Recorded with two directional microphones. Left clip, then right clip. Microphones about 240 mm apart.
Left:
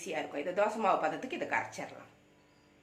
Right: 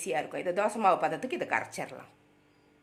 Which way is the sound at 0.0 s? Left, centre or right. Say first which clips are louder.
Right 5 dB; right.